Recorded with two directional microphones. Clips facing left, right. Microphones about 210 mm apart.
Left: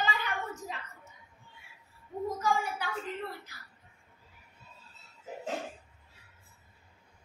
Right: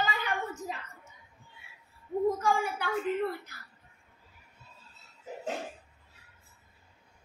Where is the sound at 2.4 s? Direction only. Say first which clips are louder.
Right 2 dB; 55° right (ahead or behind).